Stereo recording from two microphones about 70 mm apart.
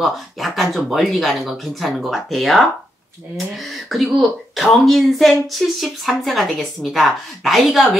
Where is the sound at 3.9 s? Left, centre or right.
Centre.